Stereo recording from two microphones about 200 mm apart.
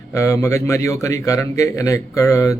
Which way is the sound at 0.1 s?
15° left (ahead or behind).